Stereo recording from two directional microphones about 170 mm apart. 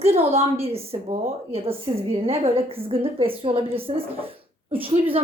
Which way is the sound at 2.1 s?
35° right (ahead or behind).